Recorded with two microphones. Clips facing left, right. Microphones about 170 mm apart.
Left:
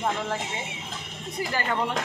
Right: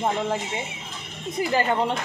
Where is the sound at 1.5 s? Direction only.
25° right (ahead or behind).